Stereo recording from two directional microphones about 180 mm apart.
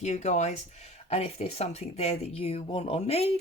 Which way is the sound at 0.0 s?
40° left (ahead or behind).